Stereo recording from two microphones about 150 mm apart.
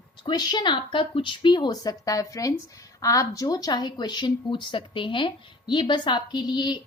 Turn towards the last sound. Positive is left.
turn(degrees=30)  # may be behind; listen again after turning